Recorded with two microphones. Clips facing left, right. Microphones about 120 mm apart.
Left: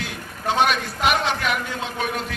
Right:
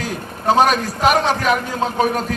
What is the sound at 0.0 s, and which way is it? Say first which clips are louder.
A man's voice: right 6 dB; 40° right (ahead or behind).